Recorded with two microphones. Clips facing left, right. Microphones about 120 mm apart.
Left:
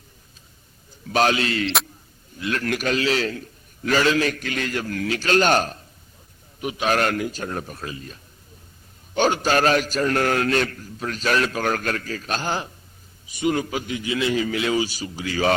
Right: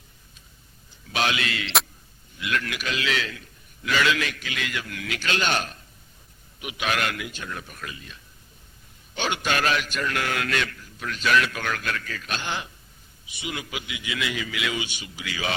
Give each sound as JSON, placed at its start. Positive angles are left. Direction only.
{"t": 1.0, "sound": "a man's voice", "side_deg": 40}